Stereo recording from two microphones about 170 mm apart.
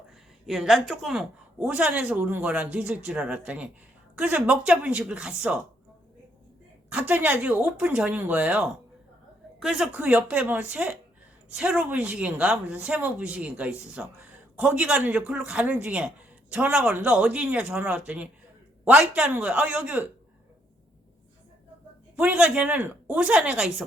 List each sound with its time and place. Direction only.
0.4 s speech: centre (ahead or behind)
6.9 s speech: 10° right (ahead or behind)
22.1 s speech: 5° right (ahead or behind)